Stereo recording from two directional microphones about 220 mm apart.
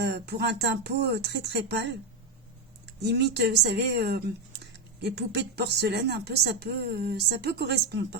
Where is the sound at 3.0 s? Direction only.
50° right (ahead or behind).